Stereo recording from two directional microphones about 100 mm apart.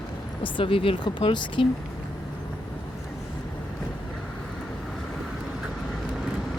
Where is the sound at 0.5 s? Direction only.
65° left (ahead or behind).